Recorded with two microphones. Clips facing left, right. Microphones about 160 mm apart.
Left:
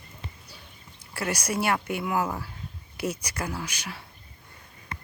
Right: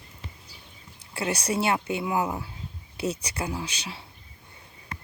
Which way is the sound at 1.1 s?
20° right (ahead or behind).